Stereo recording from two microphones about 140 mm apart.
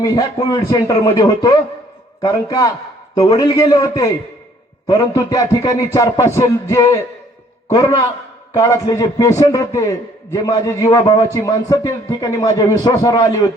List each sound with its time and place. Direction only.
0.0 s a man's voice: 25° left (ahead or behind)